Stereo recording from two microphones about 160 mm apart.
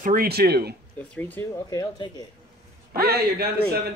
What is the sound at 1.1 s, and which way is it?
Speech, 10° left (ahead or behind).